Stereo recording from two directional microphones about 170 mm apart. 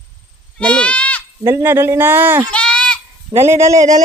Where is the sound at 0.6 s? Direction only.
5° left (ahead or behind).